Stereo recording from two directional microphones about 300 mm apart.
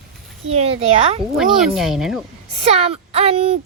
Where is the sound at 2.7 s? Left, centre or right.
Centre.